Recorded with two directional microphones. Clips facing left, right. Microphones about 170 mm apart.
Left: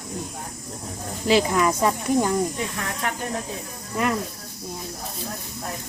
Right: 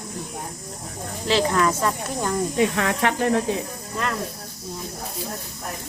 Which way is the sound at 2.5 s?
90° right.